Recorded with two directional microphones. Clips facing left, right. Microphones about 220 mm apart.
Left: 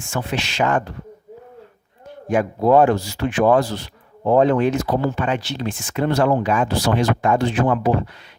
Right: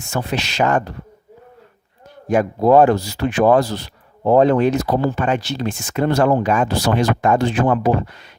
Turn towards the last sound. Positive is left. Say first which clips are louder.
# right 2 dB
turn(degrees=-45)  # may be behind; listen again after turning